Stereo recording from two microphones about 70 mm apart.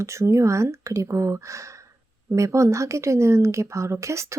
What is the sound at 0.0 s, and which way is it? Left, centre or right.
Speech, right.